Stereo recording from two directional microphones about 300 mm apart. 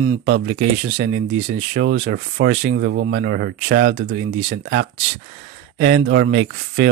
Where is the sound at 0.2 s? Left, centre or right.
Right.